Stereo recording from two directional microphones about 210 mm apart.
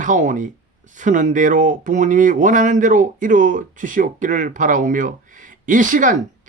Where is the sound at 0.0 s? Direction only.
35° right (ahead or behind).